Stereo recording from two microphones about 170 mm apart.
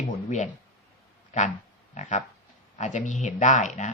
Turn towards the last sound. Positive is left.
turn(degrees=45)  # may be behind; listen again after turning